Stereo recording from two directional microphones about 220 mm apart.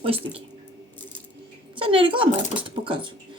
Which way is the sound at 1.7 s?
25° right (ahead or behind).